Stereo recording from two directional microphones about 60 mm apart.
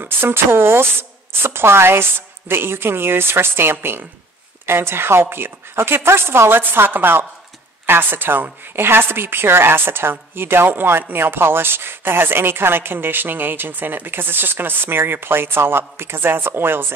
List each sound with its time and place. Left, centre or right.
0.0 s a woman's voice: right